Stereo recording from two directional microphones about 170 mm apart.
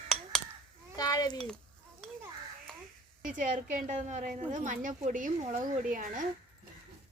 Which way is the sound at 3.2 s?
50° right (ahead or behind).